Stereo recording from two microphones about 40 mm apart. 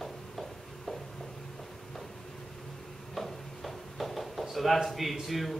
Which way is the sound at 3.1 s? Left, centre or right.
Centre.